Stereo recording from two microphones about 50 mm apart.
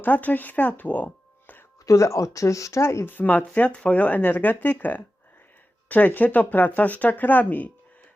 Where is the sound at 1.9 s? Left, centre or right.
Left.